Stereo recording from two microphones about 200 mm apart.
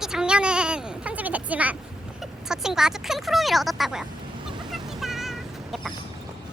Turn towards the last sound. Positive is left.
turn(degrees=0)  # may be behind; listen again after turning